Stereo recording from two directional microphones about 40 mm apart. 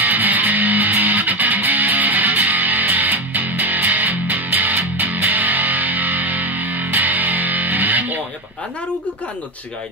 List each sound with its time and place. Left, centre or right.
0.0 s music: right